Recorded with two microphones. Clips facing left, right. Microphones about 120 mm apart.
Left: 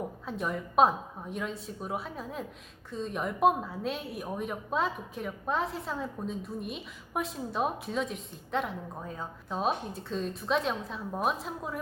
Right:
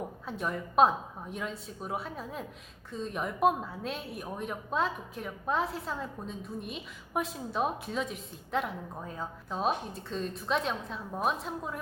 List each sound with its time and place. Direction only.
0.3 s a woman's voice: centre (ahead or behind)